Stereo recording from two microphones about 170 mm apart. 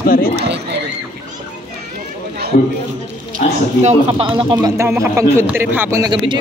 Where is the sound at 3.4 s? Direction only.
50° left (ahead or behind).